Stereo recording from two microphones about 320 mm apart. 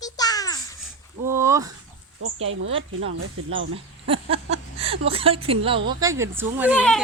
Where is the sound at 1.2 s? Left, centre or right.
Centre.